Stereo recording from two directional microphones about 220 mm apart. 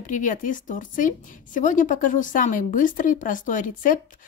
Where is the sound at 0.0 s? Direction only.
35° left (ahead or behind).